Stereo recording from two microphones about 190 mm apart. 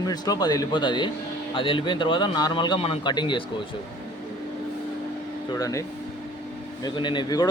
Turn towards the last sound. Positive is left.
turn(degrees=20)  # may be behind; listen again after turning